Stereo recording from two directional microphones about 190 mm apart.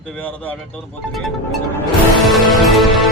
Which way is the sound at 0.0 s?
5° left (ahead or behind).